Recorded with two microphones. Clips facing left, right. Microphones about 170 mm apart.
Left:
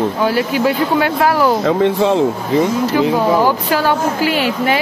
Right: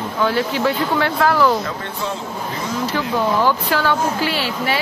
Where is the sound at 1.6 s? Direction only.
85° left.